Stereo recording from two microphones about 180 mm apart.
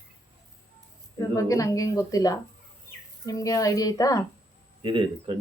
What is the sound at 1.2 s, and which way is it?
Speech, 20° left (ahead or behind).